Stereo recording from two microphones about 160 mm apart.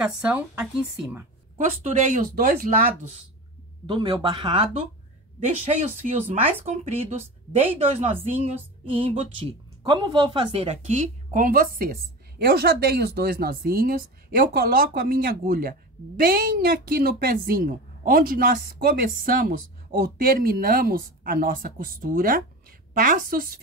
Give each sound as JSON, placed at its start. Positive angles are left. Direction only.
{"t": 0.0, "sound": "a woman's voice", "side_deg": -5}
{"t": 1.6, "sound": "speech", "side_deg": -50}
{"t": 3.8, "sound": "a woman's voice", "side_deg": -30}
{"t": 6.6, "sound": "a woman's voice", "side_deg": -45}